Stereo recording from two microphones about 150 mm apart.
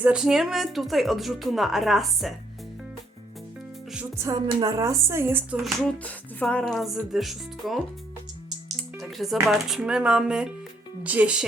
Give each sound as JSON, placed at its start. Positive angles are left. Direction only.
{"t": 0.0, "sound": "speech", "side_deg": -5}
{"t": 4.2, "sound": "a woman's voice", "side_deg": -25}
{"t": 6.0, "sound": "speech", "side_deg": 10}
{"t": 9.0, "sound": "speech", "side_deg": 0}